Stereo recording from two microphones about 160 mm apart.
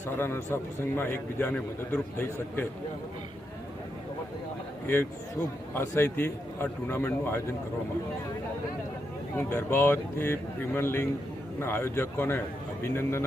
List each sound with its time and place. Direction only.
0.2 s a man's voice: 15° left (ahead or behind)
5.7 s a man's voice: 15° left (ahead or behind)
9.4 s a man's voice: 10° left (ahead or behind)